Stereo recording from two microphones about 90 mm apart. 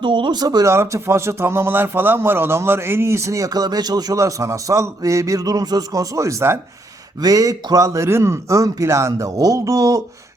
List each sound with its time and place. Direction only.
0.0 s speech: 65° right (ahead or behind); by 0.6 s 50° right (ahead or behind)
0.6 s speech: 30° right (ahead or behind)
7.2 s speech: 40° right (ahead or behind)